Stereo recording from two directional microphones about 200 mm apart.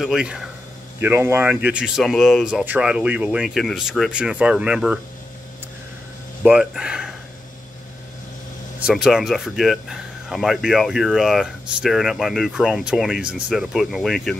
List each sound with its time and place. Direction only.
0.0 s speech: 5° right (ahead or behind)
6.4 s speech: 5° right (ahead or behind)
8.8 s speech: centre (ahead or behind)